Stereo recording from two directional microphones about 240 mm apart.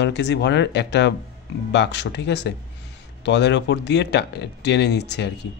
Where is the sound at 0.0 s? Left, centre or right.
Left.